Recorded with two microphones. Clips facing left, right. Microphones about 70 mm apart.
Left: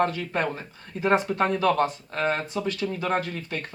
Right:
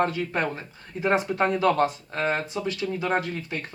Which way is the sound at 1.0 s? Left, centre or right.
Centre.